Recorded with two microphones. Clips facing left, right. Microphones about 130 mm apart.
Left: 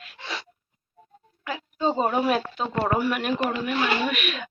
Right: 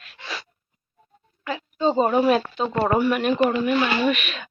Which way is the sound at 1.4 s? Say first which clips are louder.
Right 3 dB; 10° left (ahead or behind).